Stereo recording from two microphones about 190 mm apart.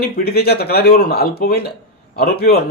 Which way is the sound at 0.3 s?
55° left (ahead or behind).